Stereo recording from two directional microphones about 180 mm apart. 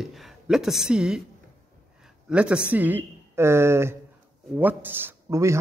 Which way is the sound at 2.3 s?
5° right (ahead or behind).